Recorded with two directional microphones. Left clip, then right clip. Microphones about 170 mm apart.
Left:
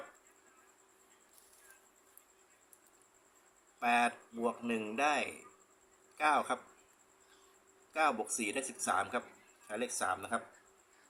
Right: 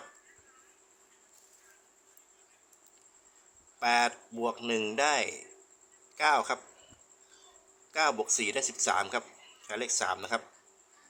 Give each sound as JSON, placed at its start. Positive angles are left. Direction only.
{"t": 3.8, "sound": "speech", "side_deg": -50}
{"t": 7.9, "sound": "speech", "side_deg": -50}